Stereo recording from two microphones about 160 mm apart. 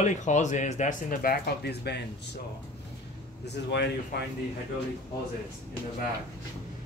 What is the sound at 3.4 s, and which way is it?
Speech, 90° left.